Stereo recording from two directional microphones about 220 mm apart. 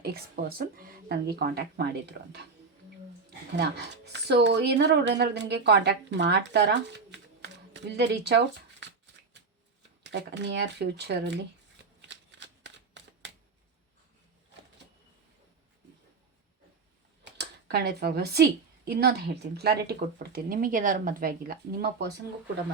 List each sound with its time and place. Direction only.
0.0 s a woman's voice: 45° right (ahead or behind)
10.0 s a woman's voice: 50° right (ahead or behind)
12.0 s shuffling cards: 55° right (ahead or behind)
17.3 s a woman's voice: 50° right (ahead or behind)